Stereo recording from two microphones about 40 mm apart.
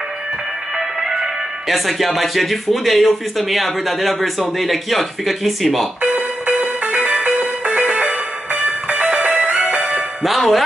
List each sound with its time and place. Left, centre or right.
0.7 s music: centre
1.7 s speech: centre
6.4 s music: right
10.2 s speech: centre